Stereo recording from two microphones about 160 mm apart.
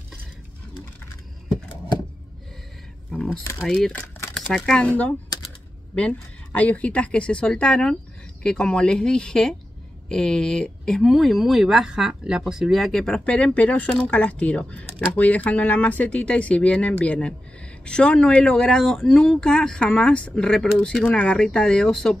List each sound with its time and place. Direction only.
3.6 s speech: centre (ahead or behind)